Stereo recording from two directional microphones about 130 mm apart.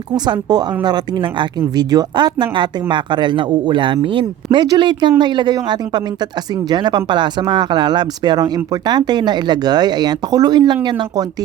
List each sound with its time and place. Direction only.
0.3 s speech: 30° right (ahead or behind)